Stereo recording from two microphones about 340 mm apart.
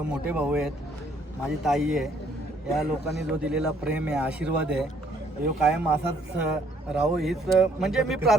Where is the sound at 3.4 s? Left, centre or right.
Centre.